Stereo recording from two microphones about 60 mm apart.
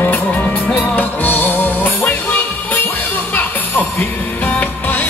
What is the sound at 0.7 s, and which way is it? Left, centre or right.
Music, left.